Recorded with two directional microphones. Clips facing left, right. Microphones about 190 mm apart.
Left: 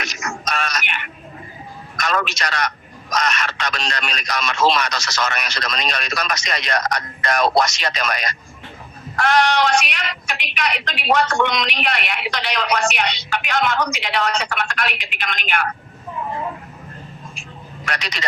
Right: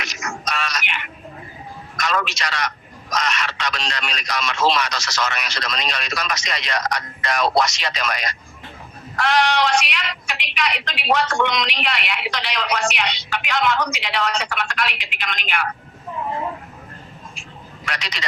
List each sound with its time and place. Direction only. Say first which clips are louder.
0.0 s a sound: left 2 dB; 45° left (ahead or behind)
2.0 s a man's voice: left 1 dB; 50° left (ahead or behind)
17.8 s speech: left 3 dB; 50° left (ahead or behind)